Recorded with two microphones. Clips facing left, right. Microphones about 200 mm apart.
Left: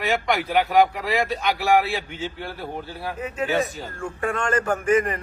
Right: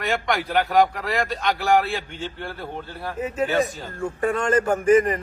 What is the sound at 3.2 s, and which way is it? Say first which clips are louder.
Speech: right 3 dB; 40° right (ahead or behind).